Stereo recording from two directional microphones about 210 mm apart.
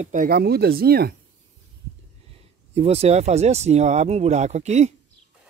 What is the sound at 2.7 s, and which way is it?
Speech, 30° right (ahead or behind).